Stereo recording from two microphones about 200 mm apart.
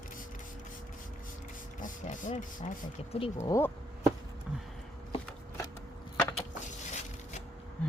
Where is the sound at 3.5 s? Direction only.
10° left (ahead or behind).